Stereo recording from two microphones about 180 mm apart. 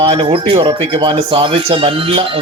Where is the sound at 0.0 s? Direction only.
30° right (ahead or behind).